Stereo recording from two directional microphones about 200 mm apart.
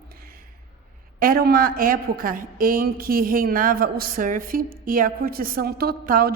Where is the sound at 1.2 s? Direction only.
50° right (ahead or behind).